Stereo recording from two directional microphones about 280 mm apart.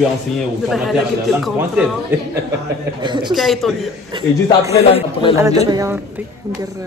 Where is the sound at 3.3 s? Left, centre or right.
Centre.